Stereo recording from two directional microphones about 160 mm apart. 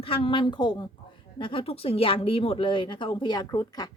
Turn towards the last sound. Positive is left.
turn(degrees=25)  # may be behind; listen again after turning